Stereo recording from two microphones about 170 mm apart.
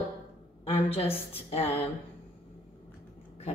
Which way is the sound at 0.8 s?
35° left (ahead or behind).